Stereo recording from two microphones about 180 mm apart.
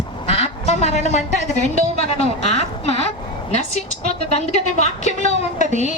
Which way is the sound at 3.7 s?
40° left (ahead or behind).